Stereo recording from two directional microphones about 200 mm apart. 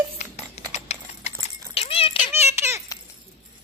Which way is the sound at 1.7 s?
30° left (ahead or behind).